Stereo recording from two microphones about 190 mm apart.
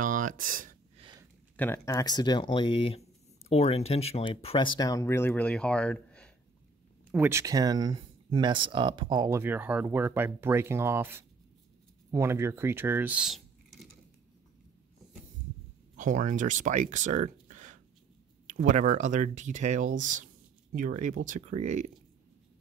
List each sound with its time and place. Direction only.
0.0 s speech: 45° right (ahead or behind)
1.6 s speech: 10° left (ahead or behind)
7.1 s speech: 10° right (ahead or behind)
16.0 s speech: 40° right (ahead or behind)